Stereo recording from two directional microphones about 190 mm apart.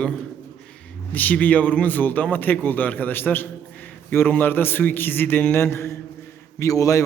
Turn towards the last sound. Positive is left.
turn(degrees=15)  # may be behind; listen again after turning